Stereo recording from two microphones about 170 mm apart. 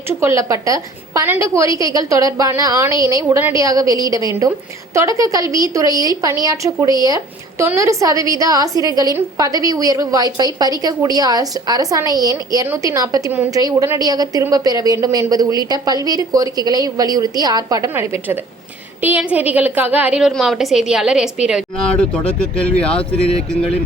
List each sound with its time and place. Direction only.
0.1 s a woman's voice: 15° right (ahead or behind); by 23.2 s 5° left (ahead or behind)